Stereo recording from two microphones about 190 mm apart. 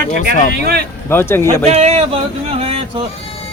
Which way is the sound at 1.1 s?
10° left (ahead or behind).